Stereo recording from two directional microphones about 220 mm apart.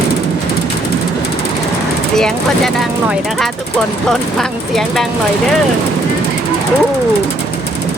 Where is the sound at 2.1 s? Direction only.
Centre (ahead or behind).